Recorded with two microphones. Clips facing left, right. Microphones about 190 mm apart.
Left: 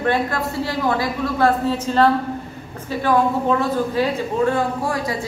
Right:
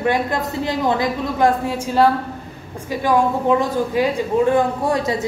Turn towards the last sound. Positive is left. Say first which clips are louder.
# right 3 dB
turn(degrees=-20)  # may be behind; listen again after turning